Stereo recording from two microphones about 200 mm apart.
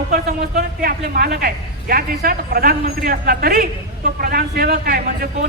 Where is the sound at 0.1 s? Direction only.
50° right (ahead or behind).